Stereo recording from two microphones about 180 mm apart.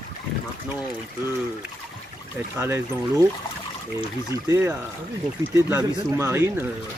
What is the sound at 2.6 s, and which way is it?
Speech, 15° right (ahead or behind).